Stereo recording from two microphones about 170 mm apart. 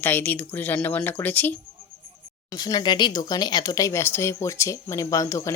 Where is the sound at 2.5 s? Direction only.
25° left (ahead or behind).